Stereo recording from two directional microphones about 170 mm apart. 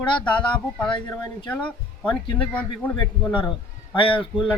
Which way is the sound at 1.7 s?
10° left (ahead or behind).